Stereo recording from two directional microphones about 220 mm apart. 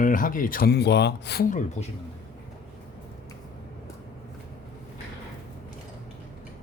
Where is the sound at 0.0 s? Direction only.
35° left (ahead or behind).